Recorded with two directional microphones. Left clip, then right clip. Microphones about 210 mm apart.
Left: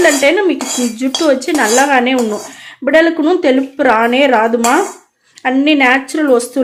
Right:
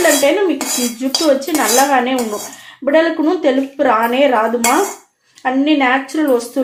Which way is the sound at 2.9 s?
45° left (ahead or behind).